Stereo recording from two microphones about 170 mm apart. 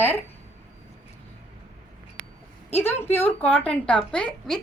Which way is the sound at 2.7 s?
10° left (ahead or behind).